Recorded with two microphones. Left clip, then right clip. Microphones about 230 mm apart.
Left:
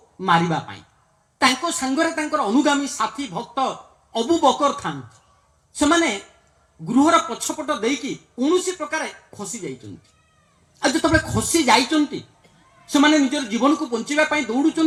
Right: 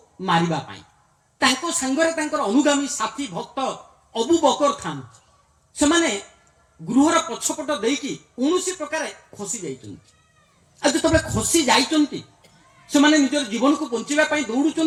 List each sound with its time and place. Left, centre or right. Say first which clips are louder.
0.2 s speech: left 2 dB; left
10.8 s speech: even; left
12.9 s speech: even; left